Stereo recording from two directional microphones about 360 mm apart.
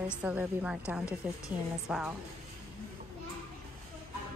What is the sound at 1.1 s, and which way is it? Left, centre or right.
Speech, centre.